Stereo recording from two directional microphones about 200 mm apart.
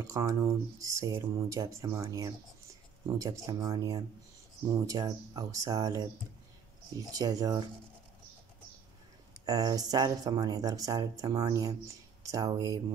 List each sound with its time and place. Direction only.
0.0 s speech: 15° right (ahead or behind)
9.5 s speech: 20° right (ahead or behind)